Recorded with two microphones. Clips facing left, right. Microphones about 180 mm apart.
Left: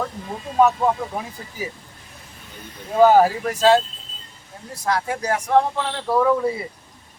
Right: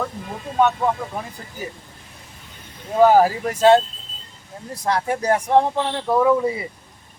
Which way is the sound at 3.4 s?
25° right (ahead or behind).